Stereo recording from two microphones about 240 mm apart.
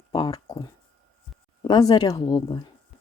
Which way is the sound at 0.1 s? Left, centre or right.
Centre.